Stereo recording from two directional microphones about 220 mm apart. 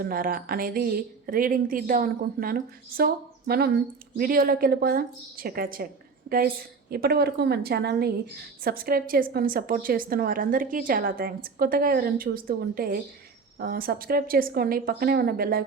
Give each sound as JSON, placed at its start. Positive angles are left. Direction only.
{"t": 0.0, "sound": "a woman's voice", "side_deg": -40}